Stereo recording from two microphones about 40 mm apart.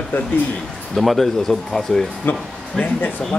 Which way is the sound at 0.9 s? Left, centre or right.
Centre.